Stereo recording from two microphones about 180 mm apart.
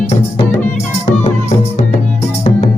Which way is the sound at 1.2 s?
40° left (ahead or behind).